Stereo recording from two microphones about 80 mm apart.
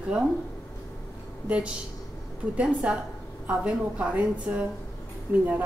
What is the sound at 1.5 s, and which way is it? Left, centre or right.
A woman's voice, centre.